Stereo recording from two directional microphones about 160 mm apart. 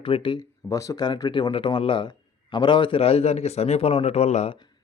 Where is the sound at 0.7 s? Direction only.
20° left (ahead or behind); by 4.5 s 40° left (ahead or behind).